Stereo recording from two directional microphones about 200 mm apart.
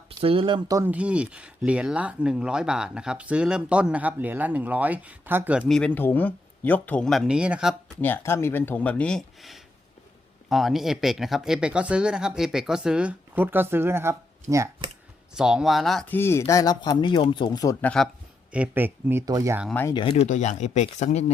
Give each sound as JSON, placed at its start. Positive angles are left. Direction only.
{"t": 0.1, "sound": "speech", "side_deg": -25}
{"t": 8.0, "sound": "speech", "side_deg": 10}
{"t": 15.4, "sound": "speech", "side_deg": -5}
{"t": 18.5, "sound": "speech", "side_deg": -10}
{"t": 19.9, "sound": "speech", "side_deg": 25}